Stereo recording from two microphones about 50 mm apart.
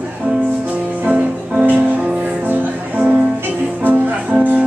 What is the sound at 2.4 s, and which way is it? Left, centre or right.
Music, right.